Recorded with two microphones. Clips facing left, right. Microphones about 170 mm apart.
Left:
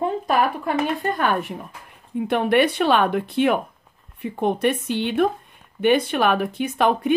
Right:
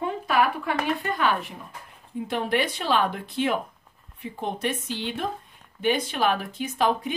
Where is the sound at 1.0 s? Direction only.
45° left (ahead or behind).